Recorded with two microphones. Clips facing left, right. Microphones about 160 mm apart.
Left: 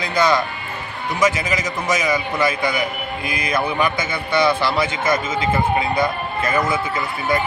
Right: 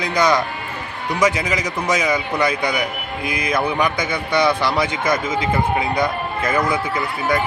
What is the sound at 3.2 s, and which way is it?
Music, 20° right (ahead or behind).